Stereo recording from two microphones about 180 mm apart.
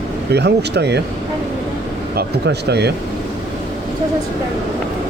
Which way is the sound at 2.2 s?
65° right (ahead or behind).